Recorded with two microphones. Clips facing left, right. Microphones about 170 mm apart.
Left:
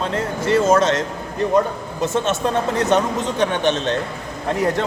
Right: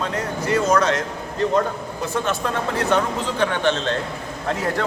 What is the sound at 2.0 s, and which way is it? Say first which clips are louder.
A man's voice: left 4 dB; 25° left (ahead or behind).